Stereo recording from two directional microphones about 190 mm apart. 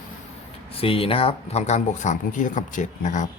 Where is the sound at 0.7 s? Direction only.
30° left (ahead or behind).